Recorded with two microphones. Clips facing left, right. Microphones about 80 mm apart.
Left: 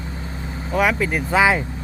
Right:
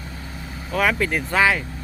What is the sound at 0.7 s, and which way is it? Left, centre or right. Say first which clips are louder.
Speech: left 2 dB; centre.